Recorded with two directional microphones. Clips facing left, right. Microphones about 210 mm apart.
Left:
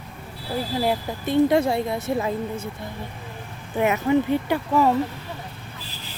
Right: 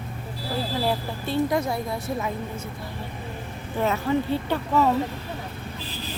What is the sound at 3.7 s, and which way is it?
Speech, 15° left (ahead or behind).